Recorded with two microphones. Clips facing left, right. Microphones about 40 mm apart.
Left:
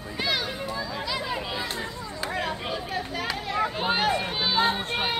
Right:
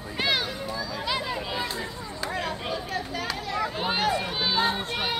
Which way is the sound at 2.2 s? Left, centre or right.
Centre.